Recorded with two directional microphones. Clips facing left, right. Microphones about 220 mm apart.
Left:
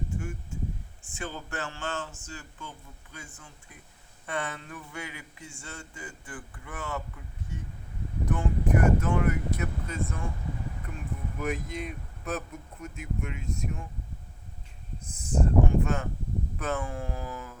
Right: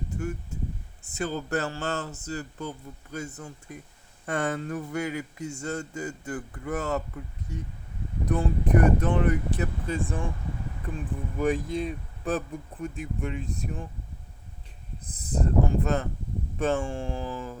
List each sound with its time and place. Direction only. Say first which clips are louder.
1.1 s speech: right 8 dB; 40° right (ahead or behind)
15.0 s speech: even; 35° right (ahead or behind)